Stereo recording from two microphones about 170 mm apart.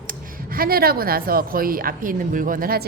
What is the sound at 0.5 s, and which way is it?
A woman's voice, 60° right (ahead or behind).